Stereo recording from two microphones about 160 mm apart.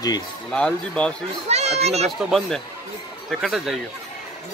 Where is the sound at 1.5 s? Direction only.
40° right (ahead or behind).